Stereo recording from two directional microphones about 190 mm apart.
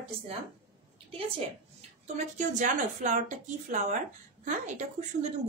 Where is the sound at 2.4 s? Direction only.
40° right (ahead or behind).